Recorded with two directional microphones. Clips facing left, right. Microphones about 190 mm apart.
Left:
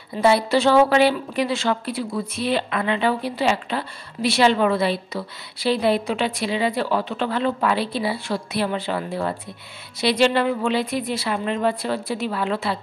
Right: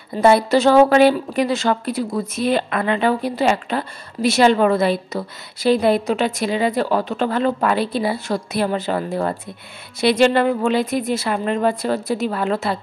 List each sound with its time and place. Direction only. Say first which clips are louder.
0.1 s a woman's voice: right 4 dB; 45° right (ahead or behind)